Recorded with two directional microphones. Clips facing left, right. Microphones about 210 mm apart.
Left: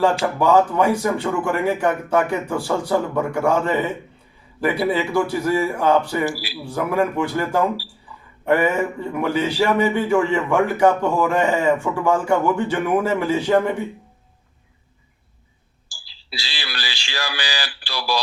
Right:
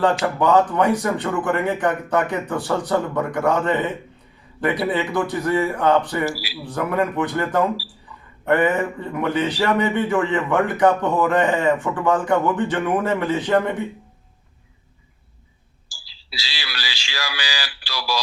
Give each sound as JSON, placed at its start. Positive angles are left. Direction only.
{"t": 0.0, "sound": "a man's voice", "side_deg": 10}
{"t": 16.4, "sound": "a sound", "side_deg": 50}
{"t": 17.6, "sound": "speech", "side_deg": 50}